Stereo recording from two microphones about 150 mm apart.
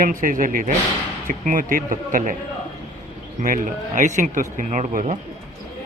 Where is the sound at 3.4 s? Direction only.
60° right (ahead or behind).